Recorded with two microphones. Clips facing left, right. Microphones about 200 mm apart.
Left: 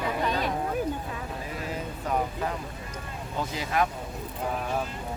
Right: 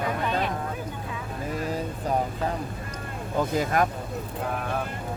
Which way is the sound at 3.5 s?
50° right (ahead or behind).